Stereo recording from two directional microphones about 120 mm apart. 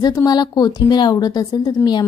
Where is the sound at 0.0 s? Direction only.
30° left (ahead or behind).